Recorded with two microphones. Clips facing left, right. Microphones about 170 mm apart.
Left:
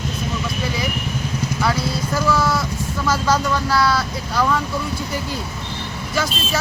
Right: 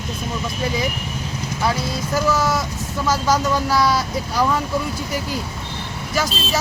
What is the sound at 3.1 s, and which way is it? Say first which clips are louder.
Speech: right 1 dB; 15° right (ahead or behind).